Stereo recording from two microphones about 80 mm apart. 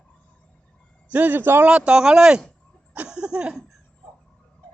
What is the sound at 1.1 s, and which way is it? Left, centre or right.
Speech, right.